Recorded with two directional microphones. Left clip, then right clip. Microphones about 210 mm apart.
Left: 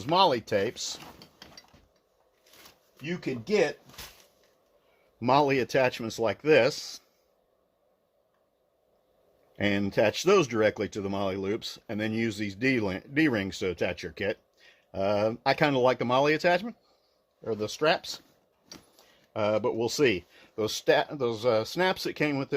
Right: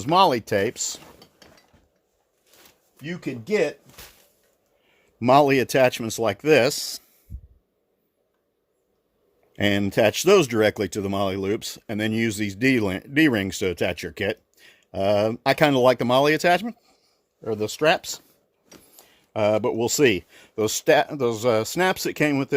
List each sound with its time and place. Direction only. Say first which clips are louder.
0.0 s speech: right 5 dB; 50° right (ahead or behind)
3.0 s speech: right 2 dB; 45° right (ahead or behind)
5.2 s speech: right 7 dB; 50° right (ahead or behind)
9.5 s speech: right 6 dB; 55° right (ahead or behind)